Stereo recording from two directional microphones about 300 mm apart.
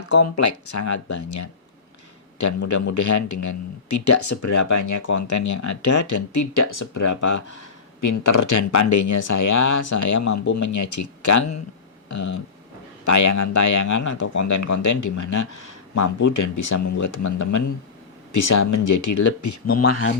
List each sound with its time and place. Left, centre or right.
0.1 s a man's voice: left
8.0 s a man's voice: left